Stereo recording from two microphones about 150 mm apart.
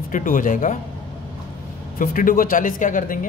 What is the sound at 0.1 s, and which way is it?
Speech, 60° left (ahead or behind).